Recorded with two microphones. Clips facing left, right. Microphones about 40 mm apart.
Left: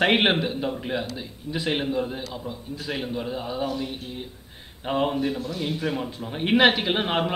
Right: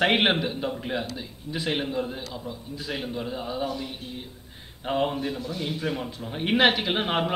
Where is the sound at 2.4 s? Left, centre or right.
Centre.